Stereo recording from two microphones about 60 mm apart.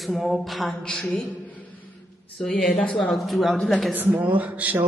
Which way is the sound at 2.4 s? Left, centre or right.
Centre.